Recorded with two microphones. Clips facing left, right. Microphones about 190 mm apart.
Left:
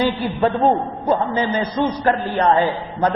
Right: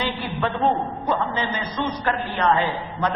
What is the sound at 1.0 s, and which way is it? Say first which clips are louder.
A woman's voice: left 6 dB; 40° left (ahead or behind).